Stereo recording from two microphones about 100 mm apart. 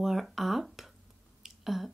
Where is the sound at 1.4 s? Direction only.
Centre (ahead or behind).